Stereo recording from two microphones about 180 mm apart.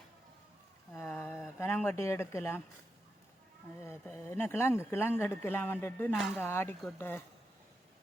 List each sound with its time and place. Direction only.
0.9 s a sound: 10° left (ahead or behind)
1.5 s speech: 10° left (ahead or behind)
3.8 s speech: 15° left (ahead or behind)